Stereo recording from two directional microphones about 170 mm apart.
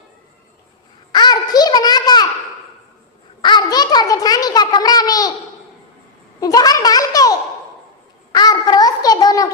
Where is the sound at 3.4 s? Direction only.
25° left (ahead or behind).